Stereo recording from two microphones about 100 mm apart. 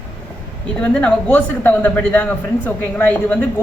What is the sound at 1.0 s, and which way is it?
Speech, 15° left (ahead or behind).